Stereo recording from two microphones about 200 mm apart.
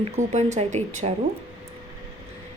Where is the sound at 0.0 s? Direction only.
35° right (ahead or behind).